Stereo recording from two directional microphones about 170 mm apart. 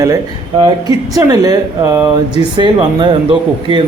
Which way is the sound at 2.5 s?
25° right (ahead or behind).